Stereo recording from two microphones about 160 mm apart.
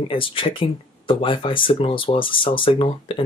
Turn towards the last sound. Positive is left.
turn(degrees=35)  # may be behind; listen again after turning